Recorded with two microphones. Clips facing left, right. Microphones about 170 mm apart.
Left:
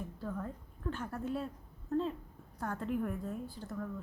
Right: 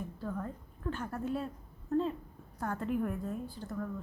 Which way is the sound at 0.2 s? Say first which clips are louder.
Right 1 dB; 5° left (ahead or behind).